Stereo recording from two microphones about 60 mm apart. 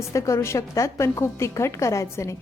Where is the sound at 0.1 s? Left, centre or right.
Left.